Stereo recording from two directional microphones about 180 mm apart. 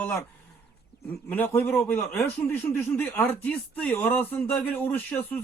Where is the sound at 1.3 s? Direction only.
10° left (ahead or behind).